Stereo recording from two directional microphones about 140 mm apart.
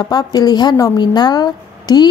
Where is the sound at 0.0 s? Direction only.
30° left (ahead or behind).